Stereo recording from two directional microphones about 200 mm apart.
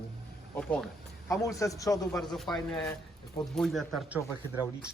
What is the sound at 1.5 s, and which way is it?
Speech, 15° left (ahead or behind).